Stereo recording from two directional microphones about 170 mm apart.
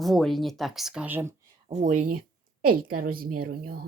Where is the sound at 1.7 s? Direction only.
45° right (ahead or behind); by 3.9 s 65° right (ahead or behind).